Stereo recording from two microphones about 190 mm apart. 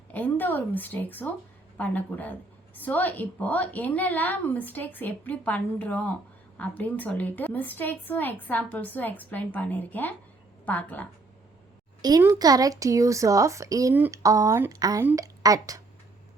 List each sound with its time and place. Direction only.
0.1 s a woman's voice: 10° left (ahead or behind)
12.0 s speech: 20° right (ahead or behind)